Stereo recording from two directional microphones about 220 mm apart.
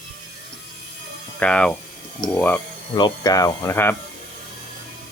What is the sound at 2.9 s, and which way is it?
Speech, 20° left (ahead or behind).